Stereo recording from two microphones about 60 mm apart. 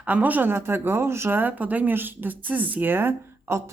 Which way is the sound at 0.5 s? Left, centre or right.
Right.